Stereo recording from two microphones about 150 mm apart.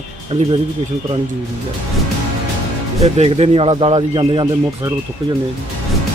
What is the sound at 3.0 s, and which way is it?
Speech, 40° right (ahead or behind).